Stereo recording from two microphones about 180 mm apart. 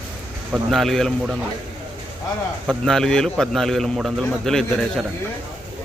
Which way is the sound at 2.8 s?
5° left (ahead or behind).